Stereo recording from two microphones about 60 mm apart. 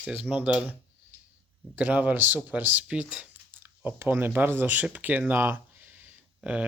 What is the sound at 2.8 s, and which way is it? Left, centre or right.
Speech, centre.